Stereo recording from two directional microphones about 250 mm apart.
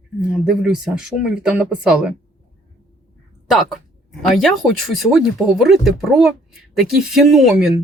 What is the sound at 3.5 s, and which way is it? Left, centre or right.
Speech, centre.